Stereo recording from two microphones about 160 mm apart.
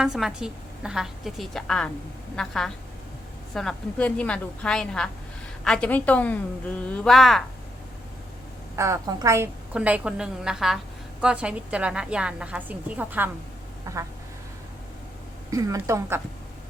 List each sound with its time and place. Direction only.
0.0 s a woman's voice: 5° right (ahead or behind)
8.7 s a woman's voice: 20° right (ahead or behind)
9.7 s a woman's voice: 5° right (ahead or behind)
15.5 s a woman's voice: 20° right (ahead or behind)